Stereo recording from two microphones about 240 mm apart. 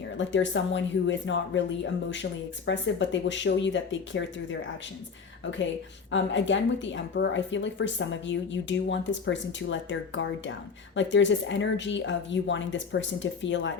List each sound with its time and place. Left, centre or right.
0.2 s a woman's voice: left
6.1 s a woman's voice: left